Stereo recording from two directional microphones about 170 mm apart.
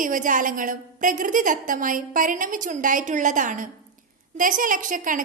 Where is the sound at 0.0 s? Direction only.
50° right (ahead or behind).